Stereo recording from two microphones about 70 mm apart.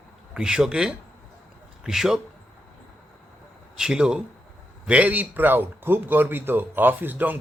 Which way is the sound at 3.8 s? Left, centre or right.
Centre.